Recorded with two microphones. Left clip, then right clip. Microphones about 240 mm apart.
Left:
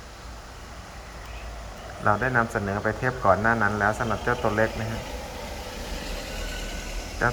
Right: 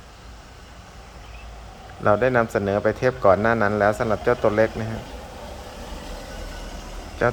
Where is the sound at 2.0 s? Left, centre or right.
Right.